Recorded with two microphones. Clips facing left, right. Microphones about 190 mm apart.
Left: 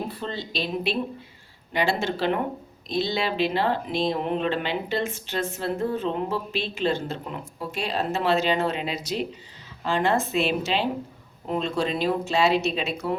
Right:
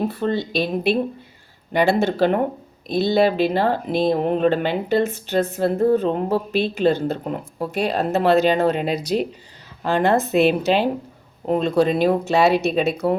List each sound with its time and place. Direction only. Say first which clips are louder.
0.1 s speech: right 10 dB; 55° right (ahead or behind)
9.0 s speech: right 7 dB; 35° right (ahead or behind)
9.8 s speech: right 5 dB; 55° right (ahead or behind)